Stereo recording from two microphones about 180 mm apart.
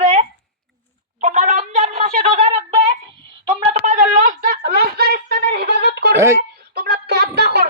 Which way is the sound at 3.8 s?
45° right (ahead or behind).